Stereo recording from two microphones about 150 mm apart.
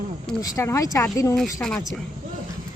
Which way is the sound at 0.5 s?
20° left (ahead or behind).